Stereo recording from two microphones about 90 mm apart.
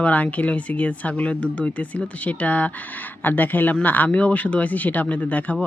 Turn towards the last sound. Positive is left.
turn(degrees=15)  # may be behind; listen again after turning